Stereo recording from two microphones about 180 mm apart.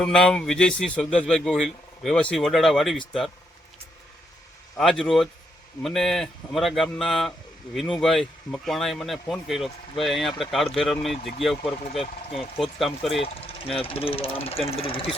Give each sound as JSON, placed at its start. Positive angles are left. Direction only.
{"t": 0.0, "sound": "speech", "side_deg": 5}
{"t": 4.8, "sound": "speech", "side_deg": 0}
{"t": 11.9, "sound": "speech", "side_deg": 30}
{"t": 12.8, "sound": "speech", "side_deg": 0}
{"t": 13.1, "sound": "speech", "side_deg": 30}